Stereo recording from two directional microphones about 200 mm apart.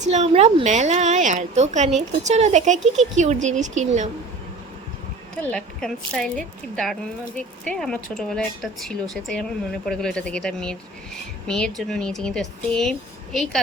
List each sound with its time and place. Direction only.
0.0 s speech: 35° right (ahead or behind)
5.5 s speech: 5° left (ahead or behind)